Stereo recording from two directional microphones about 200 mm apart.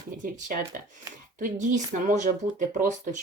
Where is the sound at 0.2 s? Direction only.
45° right (ahead or behind).